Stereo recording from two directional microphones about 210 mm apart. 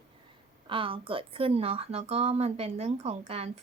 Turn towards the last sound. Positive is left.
turn(degrees=-30)  # may be behind; listen again after turning